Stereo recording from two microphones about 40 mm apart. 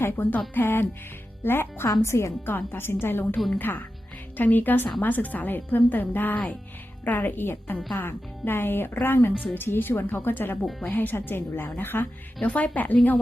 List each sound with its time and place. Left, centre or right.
0.2 s a woman's voice: left
0.5 s a woman's voice: left
3.6 s a woman's voice: left
5.5 s a woman's voice: left
12.4 s speech: left